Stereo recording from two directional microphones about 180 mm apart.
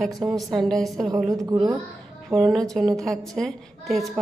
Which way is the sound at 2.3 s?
Centre (ahead or behind).